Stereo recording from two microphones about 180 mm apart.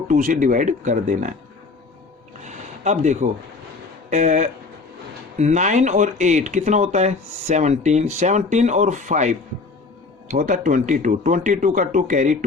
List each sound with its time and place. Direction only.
0.1 s speech: 45° right (ahead or behind)
2.4 s a sound: 40° right (ahead or behind)
4.1 s speech: 40° right (ahead or behind)